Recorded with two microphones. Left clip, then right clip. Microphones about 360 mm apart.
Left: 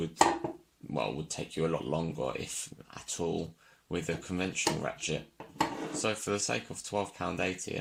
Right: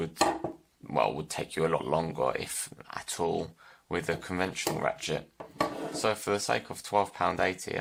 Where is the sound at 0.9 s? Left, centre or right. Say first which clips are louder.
Right 6 dB; right.